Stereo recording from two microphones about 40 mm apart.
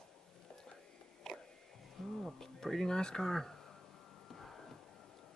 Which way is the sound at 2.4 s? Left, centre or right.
Centre.